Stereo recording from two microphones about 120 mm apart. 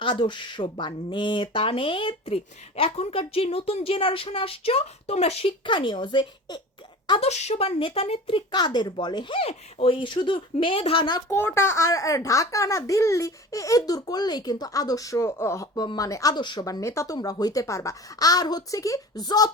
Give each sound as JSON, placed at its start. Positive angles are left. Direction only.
{"t": 0.0, "sound": "speech", "side_deg": 45}
{"t": 7.2, "sound": "a woman's voice", "side_deg": 65}
{"t": 7.8, "sound": "speech", "side_deg": 45}
{"t": 8.0, "sound": "a woman's voice", "side_deg": 55}
{"t": 8.5, "sound": "speech", "side_deg": 35}
{"t": 11.3, "sound": "a child's voice", "side_deg": 20}